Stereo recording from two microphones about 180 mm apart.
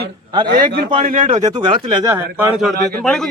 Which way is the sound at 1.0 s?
50° right (ahead or behind).